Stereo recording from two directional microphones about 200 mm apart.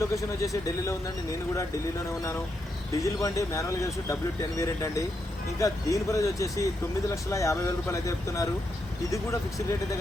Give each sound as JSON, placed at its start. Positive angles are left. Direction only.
{"t": 0.0, "sound": "speech", "side_deg": 15}
{"t": 3.0, "sound": "speech", "side_deg": 15}